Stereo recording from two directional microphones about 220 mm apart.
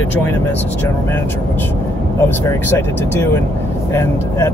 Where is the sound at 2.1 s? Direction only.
10° left (ahead or behind).